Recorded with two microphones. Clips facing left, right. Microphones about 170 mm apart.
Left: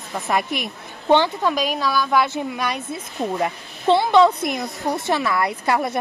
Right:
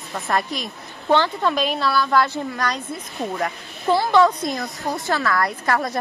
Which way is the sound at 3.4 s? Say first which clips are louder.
Left 3 dB; 20° left (ahead or behind).